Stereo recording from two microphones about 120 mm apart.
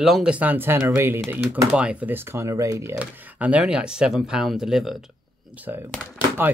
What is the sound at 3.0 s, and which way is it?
Speech, 10° right (ahead or behind).